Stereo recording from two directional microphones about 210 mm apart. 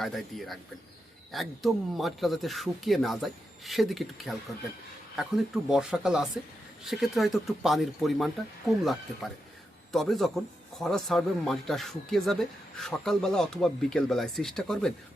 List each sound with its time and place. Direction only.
0.0 s a man's voice: centre (ahead or behind)
5.6 s a man's voice: 5° right (ahead or behind)